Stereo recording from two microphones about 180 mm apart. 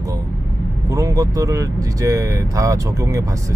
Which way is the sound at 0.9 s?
20° right (ahead or behind).